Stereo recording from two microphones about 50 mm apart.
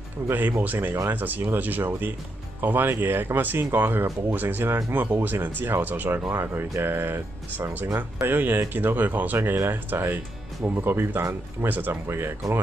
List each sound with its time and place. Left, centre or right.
0.3 s speech: right
6.3 s speech: right
9.4 s speech: right
11.9 s speech: right